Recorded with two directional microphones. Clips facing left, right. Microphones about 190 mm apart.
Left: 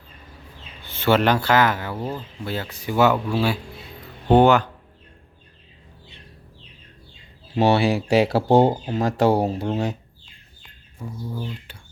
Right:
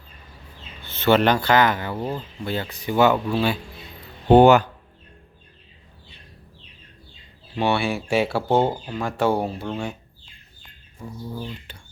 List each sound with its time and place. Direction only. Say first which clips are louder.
0.8 s speech: right 1 dB; 10° left (ahead or behind)
4.3 s speech: right 2 dB; 10° right (ahead or behind)
7.5 s speech: left 4 dB; 40° left (ahead or behind)
11.7 s speech: right 1 dB; 5° left (ahead or behind)